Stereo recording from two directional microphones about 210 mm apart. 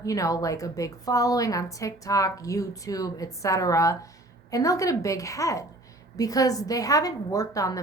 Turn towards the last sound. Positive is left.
turn(degrees=15)  # may be behind; listen again after turning